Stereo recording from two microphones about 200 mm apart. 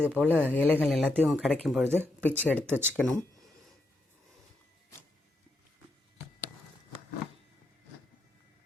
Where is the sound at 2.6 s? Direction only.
10° right (ahead or behind).